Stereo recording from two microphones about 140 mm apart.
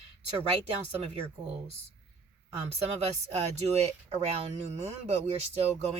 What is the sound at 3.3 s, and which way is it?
Speech, 50° right (ahead or behind).